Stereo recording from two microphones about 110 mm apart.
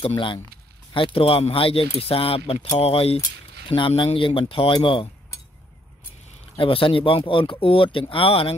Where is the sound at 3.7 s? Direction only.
50° left (ahead or behind).